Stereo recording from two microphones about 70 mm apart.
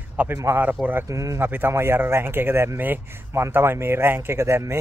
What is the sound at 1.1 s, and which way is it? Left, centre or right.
Speech, right.